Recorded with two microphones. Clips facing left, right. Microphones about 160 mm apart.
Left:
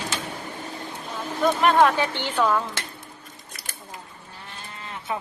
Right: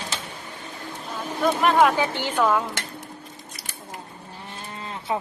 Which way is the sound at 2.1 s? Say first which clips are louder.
Right 2 dB; 45° right (ahead or behind).